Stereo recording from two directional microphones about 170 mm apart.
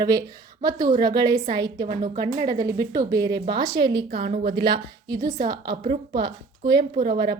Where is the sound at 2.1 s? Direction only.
40° right (ahead or behind).